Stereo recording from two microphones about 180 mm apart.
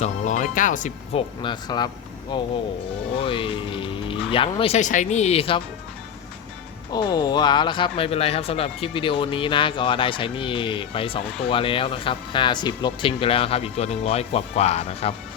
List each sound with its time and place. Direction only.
0.0 s speech: 45° left (ahead or behind)
1.1 s speech: 25° left (ahead or behind)
6.9 s speech: 20° left (ahead or behind)